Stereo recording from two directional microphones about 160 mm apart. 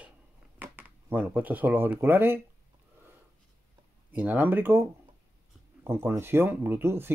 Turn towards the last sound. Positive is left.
turn(degrees=-15)  # may be behind; listen again after turning